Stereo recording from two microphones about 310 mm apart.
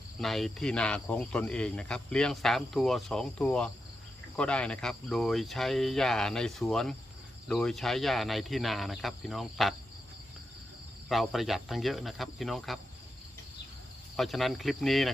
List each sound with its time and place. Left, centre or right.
0.2 s speech: centre
11.1 s speech: centre
14.2 s speech: centre